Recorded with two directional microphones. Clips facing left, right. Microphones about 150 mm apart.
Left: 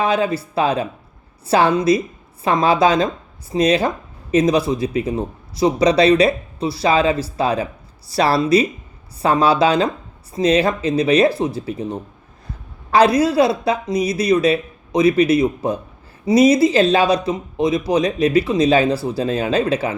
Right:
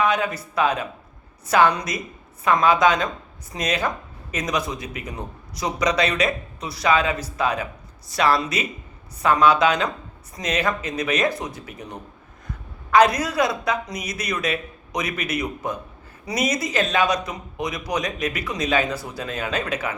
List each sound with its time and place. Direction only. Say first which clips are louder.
0.0 s a woman's voice: left 4 dB; 30° left (ahead or behind)